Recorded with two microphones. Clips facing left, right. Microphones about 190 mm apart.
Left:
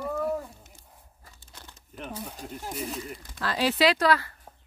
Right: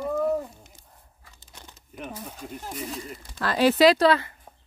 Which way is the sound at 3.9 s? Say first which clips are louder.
Right 4 dB; 25° right (ahead or behind).